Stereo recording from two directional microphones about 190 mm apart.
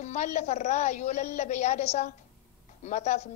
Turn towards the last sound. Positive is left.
turn(degrees=35)  # may be behind; listen again after turning